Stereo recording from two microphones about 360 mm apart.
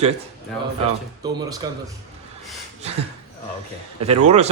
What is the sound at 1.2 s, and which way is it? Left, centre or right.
Speech, centre.